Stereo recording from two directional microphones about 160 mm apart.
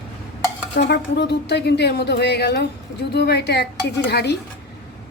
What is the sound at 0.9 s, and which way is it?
Speech, 90° left.